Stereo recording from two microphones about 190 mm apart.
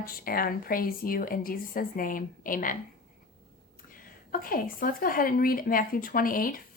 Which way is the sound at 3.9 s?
45° left (ahead or behind).